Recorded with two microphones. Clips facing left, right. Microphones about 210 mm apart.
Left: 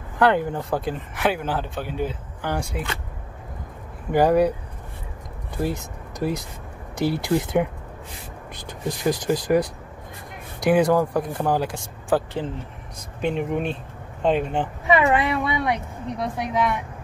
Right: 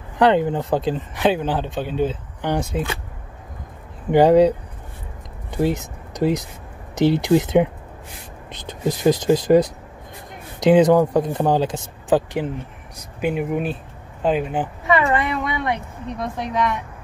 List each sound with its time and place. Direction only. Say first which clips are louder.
0.2 s speech: right 3 dB; 20° right (ahead or behind)
4.1 s speech: right 5 dB; 20° right (ahead or behind)
5.6 s speech: right 5 dB; 20° right (ahead or behind)
13.2 s speech: right 2 dB; 5° right (ahead or behind)
14.9 s speech: left 1 dB; 15° left (ahead or behind)